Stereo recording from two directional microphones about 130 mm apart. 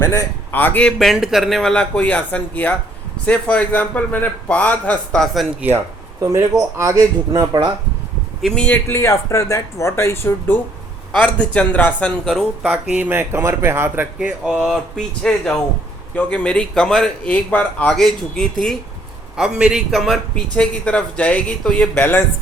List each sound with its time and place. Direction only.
0.0 s a man's voice: 20° left (ahead or behind); by 5.6 s centre (ahead or behind)
5.6 s a man's voice: 20° right (ahead or behind)
8.4 s a man's voice: 5° left (ahead or behind)
12.6 s a man's voice: 10° right (ahead or behind); by 22.2 s 10° left (ahead or behind)